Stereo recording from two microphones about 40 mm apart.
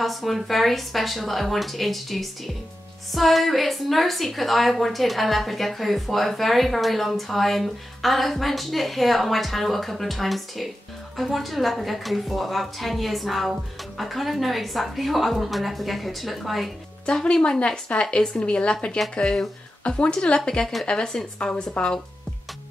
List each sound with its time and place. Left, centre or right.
0.0 s a woman's voice: centre
17.0 s speech: left
19.2 s speech: centre
19.8 s speech: left